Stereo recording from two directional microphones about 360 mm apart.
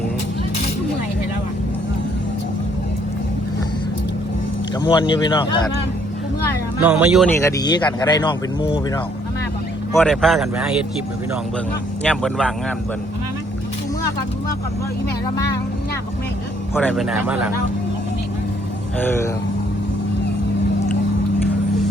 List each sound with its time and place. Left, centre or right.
4.8 s speech: centre
6.8 s speech: centre
9.9 s speech: centre
12.0 s speech: centre
16.7 s speech: centre
18.9 s speech: centre